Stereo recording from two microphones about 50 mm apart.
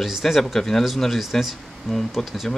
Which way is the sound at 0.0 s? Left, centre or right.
Centre.